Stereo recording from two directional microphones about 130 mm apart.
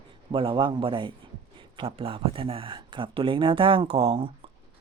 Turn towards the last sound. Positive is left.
turn(degrees=-45)  # may be behind; listen again after turning